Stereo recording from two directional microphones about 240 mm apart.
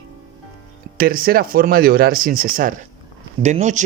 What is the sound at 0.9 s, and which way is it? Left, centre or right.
A man's voice, right.